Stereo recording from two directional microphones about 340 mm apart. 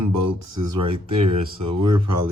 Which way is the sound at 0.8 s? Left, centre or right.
Centre.